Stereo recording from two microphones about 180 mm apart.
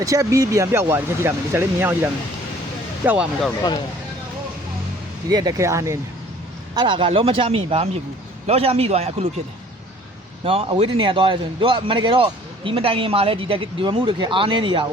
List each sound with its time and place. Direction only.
0.0 s speech: 15° right (ahead or behind)
5.3 s speech: 20° right (ahead or behind)
6.7 s speech: 25° right (ahead or behind)
10.4 s a man's voice: 30° right (ahead or behind)